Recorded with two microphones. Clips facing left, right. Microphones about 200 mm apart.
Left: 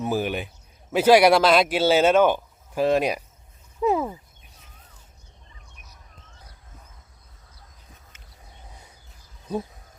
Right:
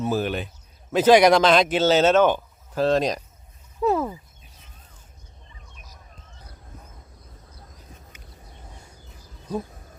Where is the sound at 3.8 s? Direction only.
10° left (ahead or behind).